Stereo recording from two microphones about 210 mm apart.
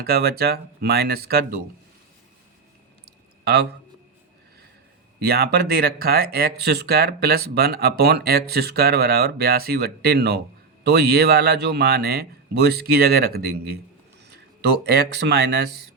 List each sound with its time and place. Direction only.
0.0 s speech: 50° right (ahead or behind)
3.4 s a man's voice: 50° right (ahead or behind)
5.2 s speech: 50° right (ahead or behind)
14.8 s speech: 50° right (ahead or behind)